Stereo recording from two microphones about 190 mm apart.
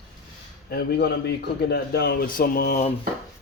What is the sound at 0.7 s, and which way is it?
A man's voice, 60° left (ahead or behind).